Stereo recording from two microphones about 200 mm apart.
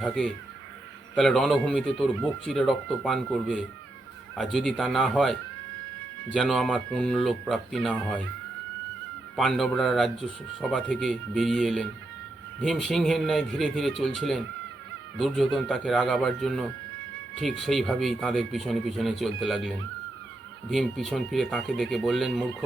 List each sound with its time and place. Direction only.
0.0 s speech: centre (ahead or behind)
9.3 s speech: centre (ahead or behind)